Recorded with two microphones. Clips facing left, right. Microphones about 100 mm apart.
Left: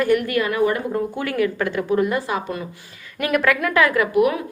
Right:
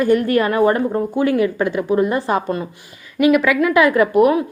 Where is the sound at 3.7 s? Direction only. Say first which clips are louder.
Right 6 dB; 20° right (ahead or behind).